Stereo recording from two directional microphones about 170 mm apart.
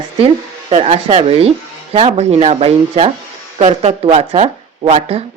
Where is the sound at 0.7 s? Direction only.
35° right (ahead or behind).